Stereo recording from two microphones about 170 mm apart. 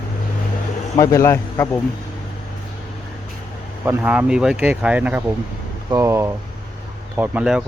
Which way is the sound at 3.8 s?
10° right (ahead or behind).